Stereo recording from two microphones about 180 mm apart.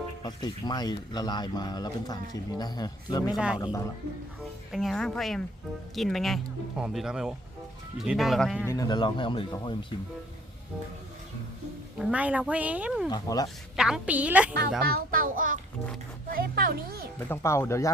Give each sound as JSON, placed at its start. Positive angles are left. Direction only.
{"t": 0.2, "sound": "speech", "side_deg": 25}
{"t": 3.3, "sound": "speech", "side_deg": -5}
{"t": 3.6, "sound": "speech", "side_deg": 20}
{"t": 4.7, "sound": "speech", "side_deg": 0}
{"t": 8.6, "sound": "speech", "side_deg": 20}
{"t": 11.9, "sound": "speech", "side_deg": -5}
{"t": 13.1, "sound": "speech", "side_deg": 20}
{"t": 13.7, "sound": "speech", "side_deg": -5}
{"t": 14.8, "sound": "a child's voice", "side_deg": -55}
{"t": 17.2, "sound": "speech", "side_deg": 15}